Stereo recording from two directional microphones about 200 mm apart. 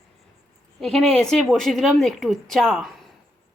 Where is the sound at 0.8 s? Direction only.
Centre (ahead or behind).